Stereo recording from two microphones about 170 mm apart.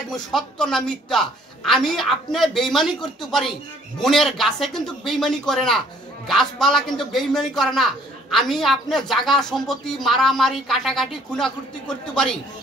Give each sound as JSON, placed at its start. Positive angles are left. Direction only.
{"t": 0.1, "sound": "a man's voice", "side_deg": 0}